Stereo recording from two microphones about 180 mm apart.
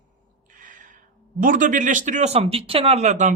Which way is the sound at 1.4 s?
45° right (ahead or behind).